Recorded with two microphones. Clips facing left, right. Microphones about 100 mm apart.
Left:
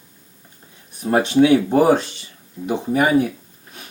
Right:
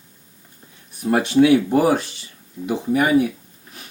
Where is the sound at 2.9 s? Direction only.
35° left (ahead or behind).